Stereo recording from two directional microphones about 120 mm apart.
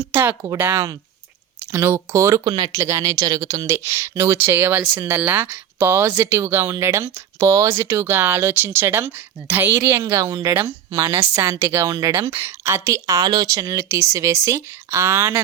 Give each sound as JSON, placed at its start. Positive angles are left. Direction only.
{"t": 0.0, "sound": "speech", "side_deg": -20}